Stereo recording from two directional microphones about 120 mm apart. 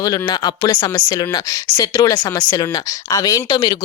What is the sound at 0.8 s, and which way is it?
Speech, 50° left (ahead or behind).